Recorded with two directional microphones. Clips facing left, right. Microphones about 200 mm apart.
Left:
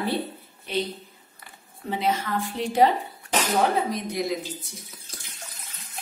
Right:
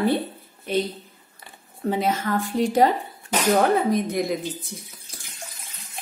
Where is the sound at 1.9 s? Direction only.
45° right (ahead or behind).